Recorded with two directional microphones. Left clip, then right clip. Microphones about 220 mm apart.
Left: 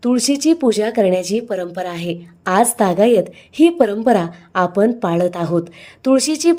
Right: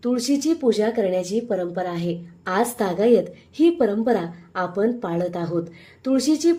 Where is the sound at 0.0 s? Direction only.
35° left (ahead or behind).